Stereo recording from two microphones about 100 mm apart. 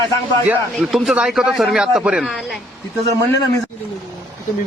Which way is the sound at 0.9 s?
Centre (ahead or behind).